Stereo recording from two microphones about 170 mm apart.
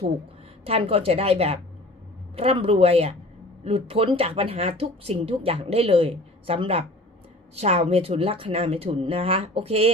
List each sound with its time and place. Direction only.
0.6 s speech: 35° right (ahead or behind)